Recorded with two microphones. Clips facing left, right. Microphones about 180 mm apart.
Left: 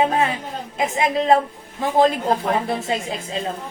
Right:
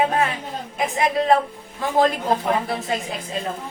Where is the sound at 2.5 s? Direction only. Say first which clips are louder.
Left 1 dB; 25° left (ahead or behind).